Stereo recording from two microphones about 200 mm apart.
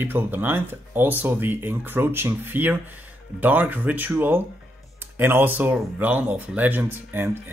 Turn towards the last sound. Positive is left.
turn(degrees=-10)  # may be behind; listen again after turning